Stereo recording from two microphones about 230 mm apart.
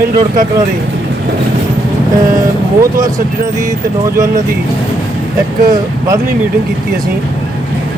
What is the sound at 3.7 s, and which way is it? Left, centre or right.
Speech, centre.